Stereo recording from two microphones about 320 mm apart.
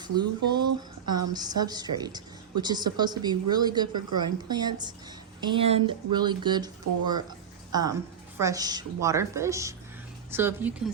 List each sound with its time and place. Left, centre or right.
0.0 s speech: centre
0.6 s a sound: right
1.3 s speech: centre